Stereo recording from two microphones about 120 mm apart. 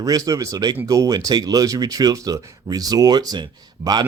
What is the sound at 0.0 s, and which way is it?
Speech, 30° right (ahead or behind).